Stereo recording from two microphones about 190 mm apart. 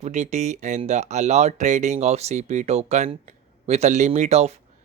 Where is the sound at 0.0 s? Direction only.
35° right (ahead or behind).